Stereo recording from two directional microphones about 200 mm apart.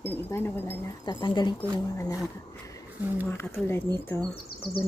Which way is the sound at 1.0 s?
20° left (ahead or behind).